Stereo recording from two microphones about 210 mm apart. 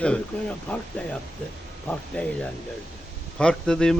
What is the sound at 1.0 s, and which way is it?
A man's voice, 5° left (ahead or behind).